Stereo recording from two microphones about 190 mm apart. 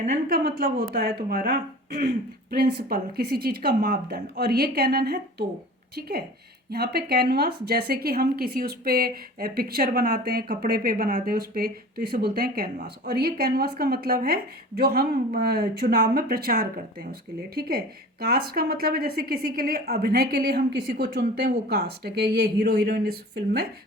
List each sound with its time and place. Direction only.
0.0 s a woman's voice: 45° right (ahead or behind)